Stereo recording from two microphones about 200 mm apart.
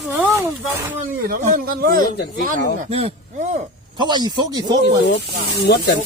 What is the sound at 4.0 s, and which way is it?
Speech, 20° right (ahead or behind).